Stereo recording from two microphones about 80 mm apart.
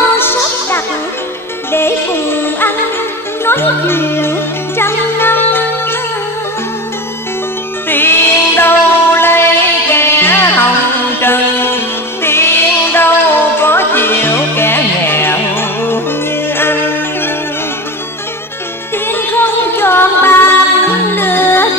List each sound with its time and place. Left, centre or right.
0.2 s music: left
7.9 s music: left
19.0 s music: left